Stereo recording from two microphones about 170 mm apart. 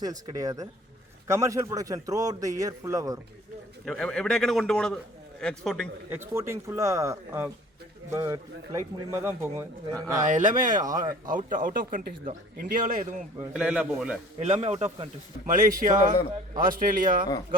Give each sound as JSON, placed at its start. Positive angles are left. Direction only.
{"t": 0.0, "sound": "a man's voice", "side_deg": -25}
{"t": 3.8, "sound": "a man's voice", "side_deg": 5}
{"t": 6.1, "sound": "a man's voice", "side_deg": -15}
{"t": 10.2, "sound": "a man's voice", "side_deg": -45}
{"t": 10.7, "sound": "a man's voice", "side_deg": -20}
{"t": 11.3, "sound": "a man's voice", "side_deg": -50}
{"t": 13.7, "sound": "a man's voice", "side_deg": -5}
{"t": 14.3, "sound": "speech", "side_deg": -35}
{"t": 15.4, "sound": "a man's voice", "side_deg": -50}